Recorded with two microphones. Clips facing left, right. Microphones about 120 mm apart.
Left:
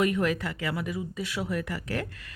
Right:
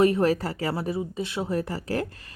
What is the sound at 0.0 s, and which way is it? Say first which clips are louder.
Speech: right 5 dB; 35° right (ahead or behind).